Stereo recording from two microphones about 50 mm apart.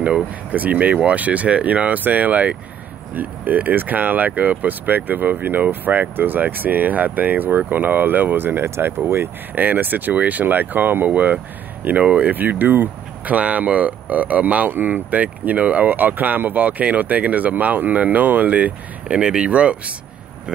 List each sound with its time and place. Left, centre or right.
0.0 s speech: right
9.6 s speech: right
19.1 s speech: centre